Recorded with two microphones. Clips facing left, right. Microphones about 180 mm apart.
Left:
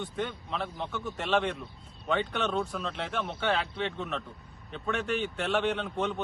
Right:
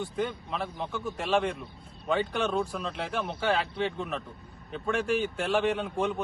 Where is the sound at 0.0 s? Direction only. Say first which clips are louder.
Right 3 dB; centre (ahead or behind).